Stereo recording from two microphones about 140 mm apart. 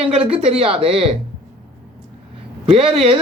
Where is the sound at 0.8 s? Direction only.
40° right (ahead or behind).